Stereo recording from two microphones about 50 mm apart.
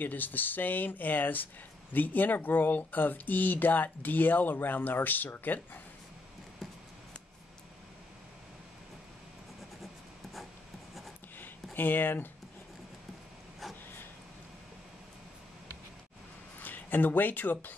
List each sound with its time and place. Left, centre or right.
0.0 s speech: left
11.3 s a sound: left
16.6 s speech: left